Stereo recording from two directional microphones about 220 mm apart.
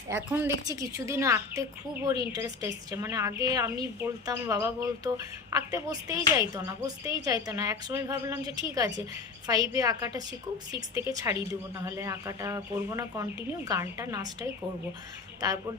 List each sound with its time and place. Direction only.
0.1 s speech: 10° right (ahead or behind)
9.5 s speech: 15° right (ahead or behind)